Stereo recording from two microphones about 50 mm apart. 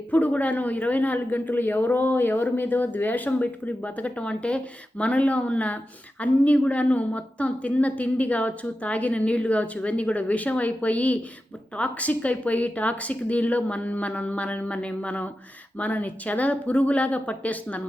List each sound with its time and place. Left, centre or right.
0.1 s speech: left